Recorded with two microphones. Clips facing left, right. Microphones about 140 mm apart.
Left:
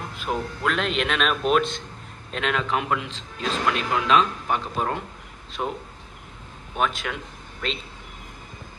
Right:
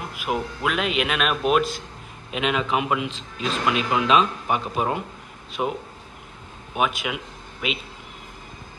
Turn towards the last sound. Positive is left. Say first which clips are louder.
# right 2 dB
turn(degrees=-10)  # may be behind; listen again after turning